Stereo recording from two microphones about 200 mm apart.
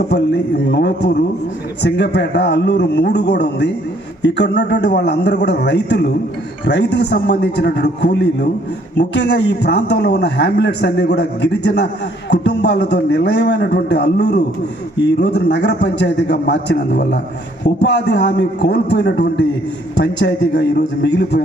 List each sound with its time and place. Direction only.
0.7 s a man's voice: 55° left (ahead or behind)